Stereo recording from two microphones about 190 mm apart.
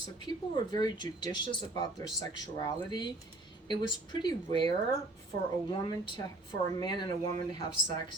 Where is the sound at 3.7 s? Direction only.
25° left (ahead or behind).